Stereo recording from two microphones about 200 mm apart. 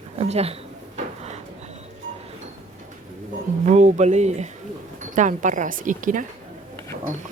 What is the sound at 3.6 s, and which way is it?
Speech, 35° right (ahead or behind).